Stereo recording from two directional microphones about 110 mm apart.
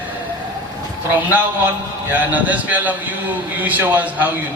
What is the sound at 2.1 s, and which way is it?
A man's voice, 15° right (ahead or behind).